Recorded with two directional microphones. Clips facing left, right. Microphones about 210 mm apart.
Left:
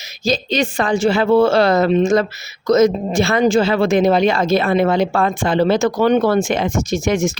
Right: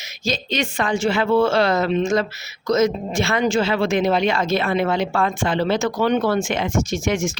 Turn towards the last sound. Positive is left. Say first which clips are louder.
# left 4 dB
turn(degrees=35)  # may be behind; listen again after turning